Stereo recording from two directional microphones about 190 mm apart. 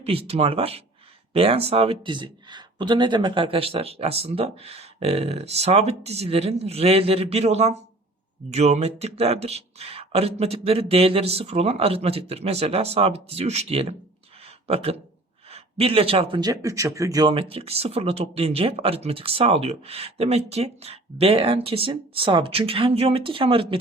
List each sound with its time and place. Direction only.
0.0 s speech: 30° right (ahead or behind)
15.4 s speech: 30° right (ahead or behind)